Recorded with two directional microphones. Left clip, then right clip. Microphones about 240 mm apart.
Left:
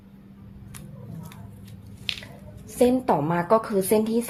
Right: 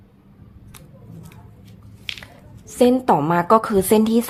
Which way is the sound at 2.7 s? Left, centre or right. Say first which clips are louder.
Right 5 dB; right.